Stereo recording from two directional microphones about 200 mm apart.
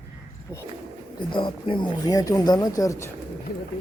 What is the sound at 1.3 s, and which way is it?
Speech, 25° left (ahead or behind).